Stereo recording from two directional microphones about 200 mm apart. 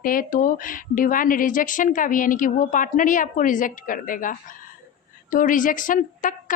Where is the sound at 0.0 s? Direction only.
45° left (ahead or behind).